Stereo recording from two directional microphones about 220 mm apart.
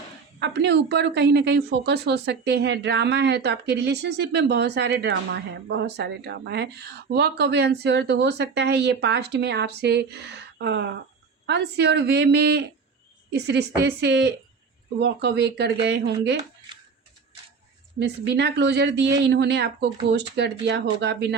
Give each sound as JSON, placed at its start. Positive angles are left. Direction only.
{"t": 0.3, "sound": "a woman's voice", "side_deg": -50}
{"t": 18.0, "sound": "a woman's voice", "side_deg": -50}